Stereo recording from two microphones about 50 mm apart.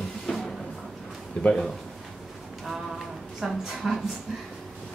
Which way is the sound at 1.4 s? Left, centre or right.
Left.